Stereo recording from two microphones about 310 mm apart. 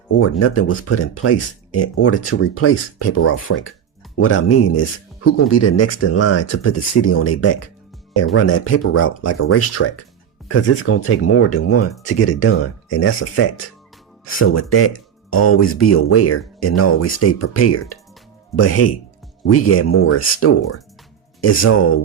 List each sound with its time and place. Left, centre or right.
0.2 s speech: left